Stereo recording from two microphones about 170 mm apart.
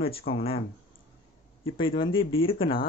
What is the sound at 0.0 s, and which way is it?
Speech, 35° left (ahead or behind).